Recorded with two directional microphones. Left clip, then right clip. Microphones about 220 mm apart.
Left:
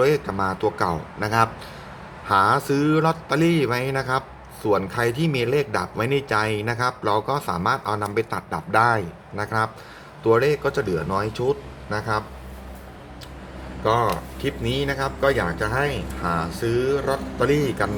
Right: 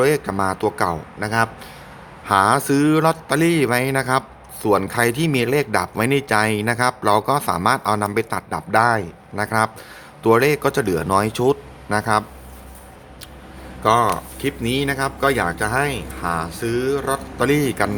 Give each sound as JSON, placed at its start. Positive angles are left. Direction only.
{"t": 0.0, "sound": "a man's voice", "side_deg": -25}
{"t": 13.8, "sound": "speech", "side_deg": -30}